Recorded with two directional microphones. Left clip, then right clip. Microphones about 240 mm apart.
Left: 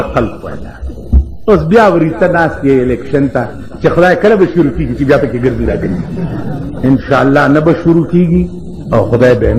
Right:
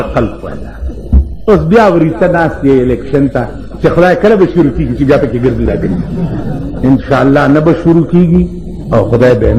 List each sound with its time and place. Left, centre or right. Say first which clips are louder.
0.0 s a man's voice: even; right